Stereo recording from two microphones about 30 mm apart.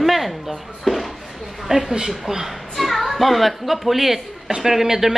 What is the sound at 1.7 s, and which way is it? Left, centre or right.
Speech, right.